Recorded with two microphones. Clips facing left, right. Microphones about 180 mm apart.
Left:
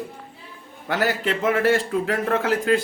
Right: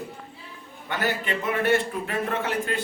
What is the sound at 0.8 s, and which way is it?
A man's voice, 90° left.